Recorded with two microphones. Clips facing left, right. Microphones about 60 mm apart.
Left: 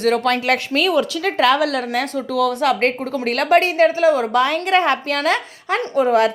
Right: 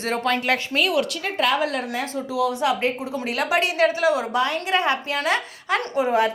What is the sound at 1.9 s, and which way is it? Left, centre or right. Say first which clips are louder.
Speech: left 5 dB; left.